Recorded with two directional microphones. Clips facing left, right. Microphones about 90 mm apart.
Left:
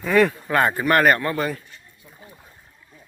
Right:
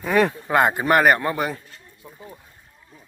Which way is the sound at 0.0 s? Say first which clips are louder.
Left 1 dB; 20° right (ahead or behind).